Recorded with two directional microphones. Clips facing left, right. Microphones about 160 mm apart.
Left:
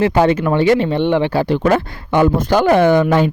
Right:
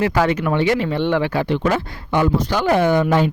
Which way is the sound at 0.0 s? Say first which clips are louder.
Left 4 dB; 25° left (ahead or behind).